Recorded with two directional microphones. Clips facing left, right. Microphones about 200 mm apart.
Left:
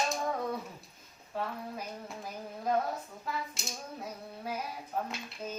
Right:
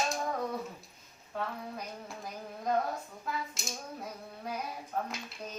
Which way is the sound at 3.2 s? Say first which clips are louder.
Right 1 dB; centre (ahead or behind).